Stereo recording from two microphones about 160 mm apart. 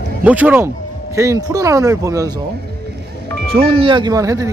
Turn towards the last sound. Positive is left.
turn(degrees=-20)  # may be behind; listen again after turning